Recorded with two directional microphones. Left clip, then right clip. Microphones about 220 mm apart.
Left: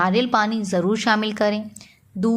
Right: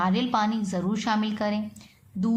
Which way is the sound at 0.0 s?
25° left (ahead or behind).